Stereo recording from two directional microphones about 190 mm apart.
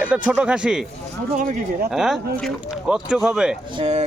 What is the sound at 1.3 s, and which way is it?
Speech, 45° right (ahead or behind).